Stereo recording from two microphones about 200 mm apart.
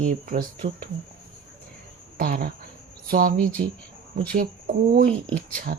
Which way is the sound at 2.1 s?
45° right (ahead or behind).